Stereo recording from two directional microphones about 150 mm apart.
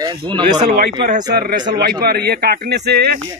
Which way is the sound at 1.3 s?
85° right.